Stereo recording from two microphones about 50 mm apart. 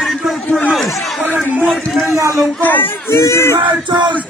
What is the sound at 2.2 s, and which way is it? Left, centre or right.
Speech, right.